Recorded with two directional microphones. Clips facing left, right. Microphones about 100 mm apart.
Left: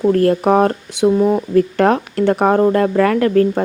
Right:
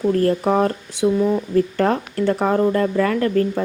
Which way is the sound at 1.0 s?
40° left (ahead or behind).